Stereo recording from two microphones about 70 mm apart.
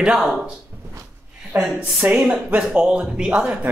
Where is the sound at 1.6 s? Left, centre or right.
Right.